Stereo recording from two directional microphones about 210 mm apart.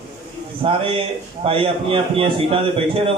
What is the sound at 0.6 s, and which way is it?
A man's voice, 25° right (ahead or behind).